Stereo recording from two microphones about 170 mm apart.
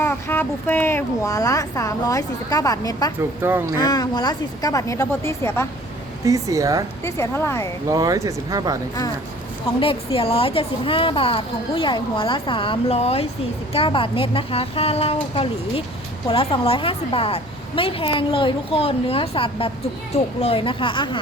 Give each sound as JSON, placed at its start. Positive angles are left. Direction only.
{"t": 0.0, "sound": "speech", "side_deg": 15}
{"t": 3.4, "sound": "speech", "side_deg": -15}
{"t": 3.8, "sound": "speech", "side_deg": 25}
{"t": 6.2, "sound": "speech", "side_deg": -20}
{"t": 7.0, "sound": "a woman's voice", "side_deg": 15}
{"t": 7.9, "sound": "speech", "side_deg": -20}
{"t": 9.8, "sound": "a woman's voice", "side_deg": 35}